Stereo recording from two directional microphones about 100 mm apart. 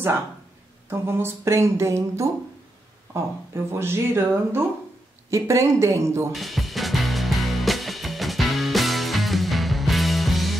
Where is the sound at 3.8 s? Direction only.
25° right (ahead or behind).